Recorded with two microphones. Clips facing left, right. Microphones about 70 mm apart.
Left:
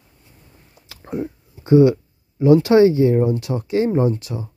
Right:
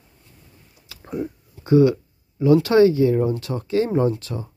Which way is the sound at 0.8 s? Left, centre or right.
Left.